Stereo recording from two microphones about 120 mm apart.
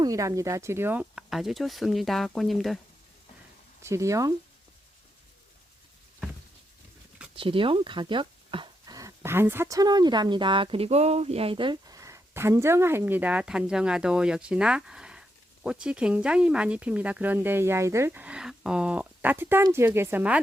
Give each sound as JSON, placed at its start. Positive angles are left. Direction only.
{"t": 0.0, "sound": "speech", "side_deg": -30}
{"t": 1.1, "sound": "speech", "side_deg": -5}
{"t": 3.8, "sound": "speech", "side_deg": -25}
{"t": 7.3, "sound": "speech", "side_deg": -45}
{"t": 8.9, "sound": "speech", "side_deg": -25}